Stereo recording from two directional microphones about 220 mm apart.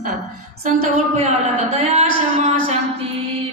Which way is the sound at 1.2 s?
30° right (ahead or behind).